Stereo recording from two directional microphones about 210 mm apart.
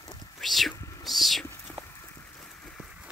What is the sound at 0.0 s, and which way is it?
Whispering, 20° left (ahead or behind).